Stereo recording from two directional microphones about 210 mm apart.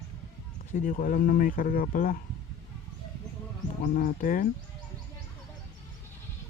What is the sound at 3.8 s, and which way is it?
Speech, 40° left (ahead or behind).